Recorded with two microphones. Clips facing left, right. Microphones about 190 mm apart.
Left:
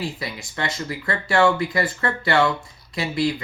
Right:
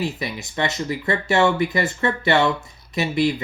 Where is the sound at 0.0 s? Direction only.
20° right (ahead or behind).